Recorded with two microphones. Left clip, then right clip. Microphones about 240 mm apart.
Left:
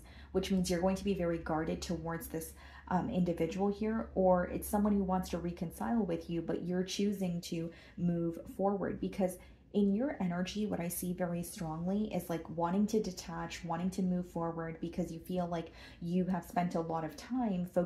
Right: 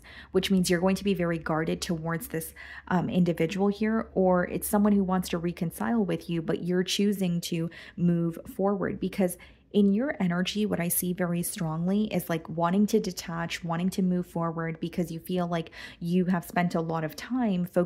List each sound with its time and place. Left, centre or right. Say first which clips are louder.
0.3 s speech: right 8 dB; right